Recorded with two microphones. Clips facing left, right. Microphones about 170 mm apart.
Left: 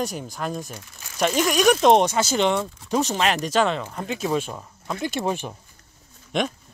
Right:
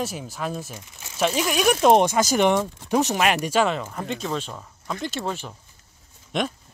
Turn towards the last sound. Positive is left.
turn(degrees=0)  # may be behind; listen again after turning